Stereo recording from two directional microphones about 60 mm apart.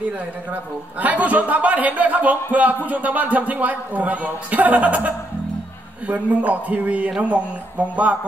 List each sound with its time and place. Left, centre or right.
0.5 s a man's voice: right